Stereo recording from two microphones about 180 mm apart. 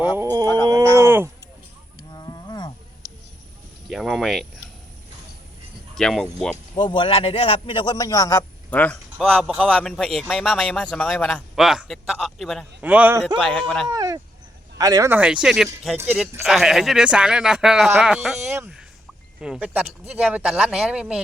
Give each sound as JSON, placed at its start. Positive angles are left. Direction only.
{"t": 0.2, "sound": "speech", "side_deg": -20}
{"t": 0.7, "sound": "a sound", "side_deg": -15}
{"t": 2.1, "sound": "wild animals", "side_deg": 25}
{"t": 3.8, "sound": "a sound", "side_deg": 0}
{"t": 5.9, "sound": "a man's voice", "side_deg": 5}
{"t": 6.7, "sound": "a man's voice", "side_deg": 30}
{"t": 13.2, "sound": "a man's voice", "side_deg": 5}
{"t": 13.8, "sound": "a man's voice", "side_deg": -20}
{"t": 18.5, "sound": "a sound", "side_deg": -10}
{"t": 19.4, "sound": "a man's voice", "side_deg": -5}